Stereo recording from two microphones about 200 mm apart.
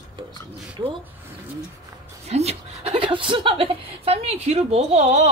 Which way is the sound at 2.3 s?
30° right (ahead or behind).